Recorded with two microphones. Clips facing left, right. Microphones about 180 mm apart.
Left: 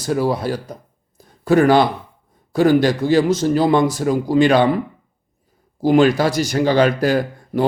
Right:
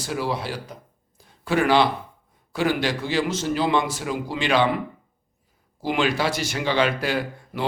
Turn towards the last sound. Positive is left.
turn(degrees=45)  # may be behind; listen again after turning